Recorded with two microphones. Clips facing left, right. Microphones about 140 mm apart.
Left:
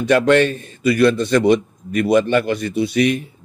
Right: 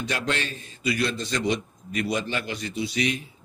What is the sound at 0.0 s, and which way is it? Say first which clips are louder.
A man's voice: left 15 dB; 60° left (ahead or behind).